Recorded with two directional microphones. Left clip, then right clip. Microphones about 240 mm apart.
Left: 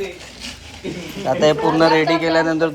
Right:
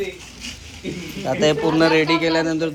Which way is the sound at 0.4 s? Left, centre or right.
Centre.